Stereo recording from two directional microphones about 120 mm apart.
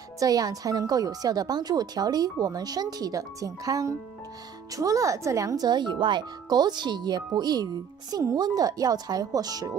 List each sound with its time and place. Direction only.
0.2 s speech: 30° right (ahead or behind)